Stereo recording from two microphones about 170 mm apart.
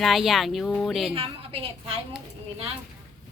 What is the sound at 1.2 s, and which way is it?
Speech, 35° right (ahead or behind).